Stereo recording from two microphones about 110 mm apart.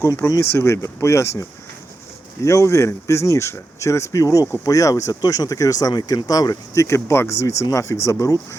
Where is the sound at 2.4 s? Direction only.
25° left (ahead or behind).